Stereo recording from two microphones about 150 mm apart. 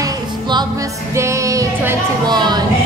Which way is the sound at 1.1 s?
20° right (ahead or behind).